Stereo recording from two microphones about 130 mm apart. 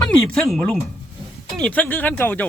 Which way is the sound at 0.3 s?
5° left (ahead or behind).